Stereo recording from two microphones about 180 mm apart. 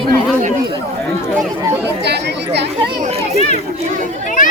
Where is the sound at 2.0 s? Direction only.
70° right (ahead or behind).